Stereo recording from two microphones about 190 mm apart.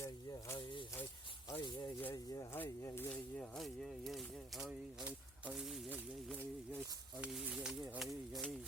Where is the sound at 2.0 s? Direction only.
15° left (ahead or behind); by 6.0 s 5° right (ahead or behind).